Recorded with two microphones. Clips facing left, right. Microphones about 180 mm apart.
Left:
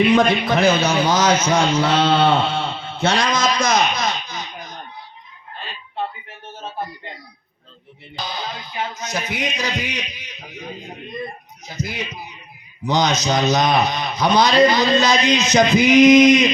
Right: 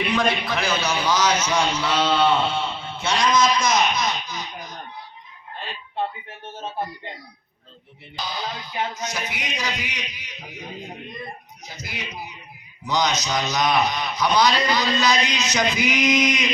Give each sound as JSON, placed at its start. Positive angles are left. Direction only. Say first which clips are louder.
{"t": 0.0, "sound": "a man's voice", "louder": "left 7 dB", "side_deg": 45}
{"t": 9.0, "sound": "a man's voice", "louder": "left 5 dB", "side_deg": 50}
{"t": 12.8, "sound": "a man's voice", "louder": "left 4 dB", "side_deg": 50}